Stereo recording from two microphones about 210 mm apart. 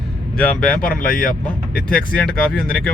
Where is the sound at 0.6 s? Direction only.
40° left (ahead or behind).